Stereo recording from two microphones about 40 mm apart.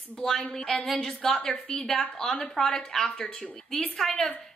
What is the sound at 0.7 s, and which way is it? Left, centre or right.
A woman's voice, centre.